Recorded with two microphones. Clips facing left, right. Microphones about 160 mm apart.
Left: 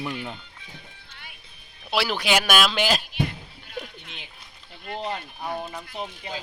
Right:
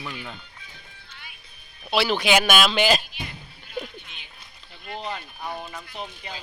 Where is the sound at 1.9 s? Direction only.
10° left (ahead or behind).